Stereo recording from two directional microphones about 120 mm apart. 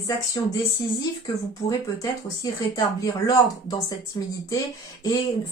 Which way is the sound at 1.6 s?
30° left (ahead or behind).